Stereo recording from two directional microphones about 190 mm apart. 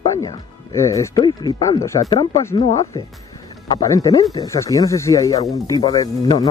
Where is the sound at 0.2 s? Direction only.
15° left (ahead or behind).